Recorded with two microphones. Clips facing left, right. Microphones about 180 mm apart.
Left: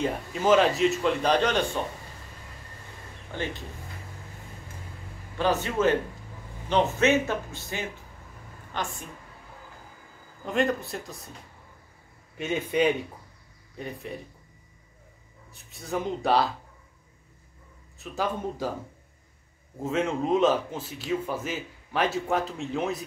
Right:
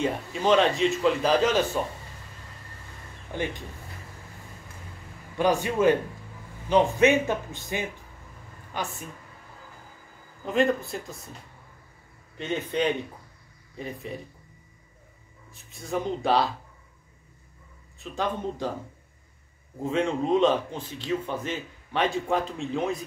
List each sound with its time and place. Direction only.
0.0 s a man's voice: centre (ahead or behind)
5.4 s speech: 15° right (ahead or behind)
10.4 s a man's voice: centre (ahead or behind)
12.4 s a man's voice: 10° left (ahead or behind)
15.5 s a man's voice: centre (ahead or behind)
17.9 s a man's voice: 5° left (ahead or behind)
19.8 s a man's voice: centre (ahead or behind)